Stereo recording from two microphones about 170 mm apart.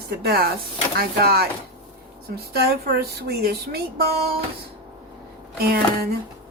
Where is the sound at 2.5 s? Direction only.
65° right (ahead or behind).